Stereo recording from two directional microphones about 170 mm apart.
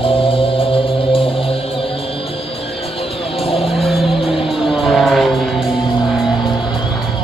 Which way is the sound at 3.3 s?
35° left (ahead or behind).